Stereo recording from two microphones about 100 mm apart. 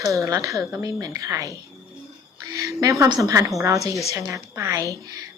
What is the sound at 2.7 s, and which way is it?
A woman's voice, 30° right (ahead or behind).